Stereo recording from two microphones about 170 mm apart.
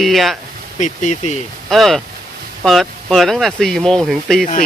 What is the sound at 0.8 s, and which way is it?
Speech, 45° left (ahead or behind).